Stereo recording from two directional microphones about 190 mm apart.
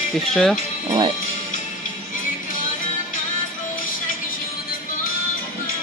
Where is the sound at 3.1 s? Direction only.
45° left (ahead or behind).